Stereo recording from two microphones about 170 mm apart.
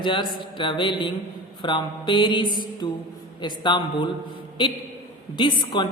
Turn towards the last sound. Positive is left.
turn(degrees=30)  # may be behind; listen again after turning